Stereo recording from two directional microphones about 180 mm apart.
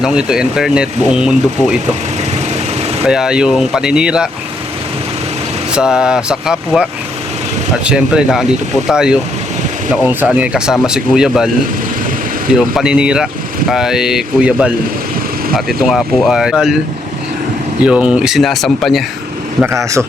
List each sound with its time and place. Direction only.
0.0 s speech: 5° right (ahead or behind)
3.1 s speech: 5° right (ahead or behind)
5.7 s speech: 5° right (ahead or behind)
7.9 s speech: 5° right (ahead or behind)
12.5 s speech: 5° right (ahead or behind)
17.8 s speech: 5° right (ahead or behind)
19.6 s speech: 15° right (ahead or behind)